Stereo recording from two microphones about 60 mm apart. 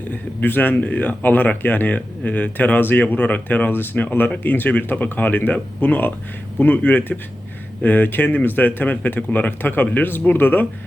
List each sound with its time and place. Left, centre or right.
0.1 s speech: left